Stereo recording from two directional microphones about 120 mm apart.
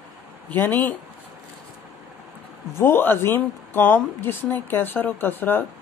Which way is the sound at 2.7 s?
20° left (ahead or behind).